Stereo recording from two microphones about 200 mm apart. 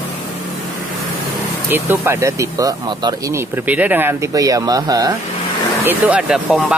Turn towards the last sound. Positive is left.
turn(degrees=-5)  # may be behind; listen again after turning